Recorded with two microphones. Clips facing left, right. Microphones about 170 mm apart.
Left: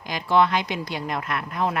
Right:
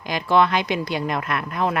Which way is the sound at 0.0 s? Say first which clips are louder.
Right 2 dB; 75° right (ahead or behind).